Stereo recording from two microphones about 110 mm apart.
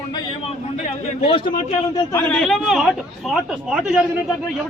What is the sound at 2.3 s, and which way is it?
A man's voice, centre (ahead or behind).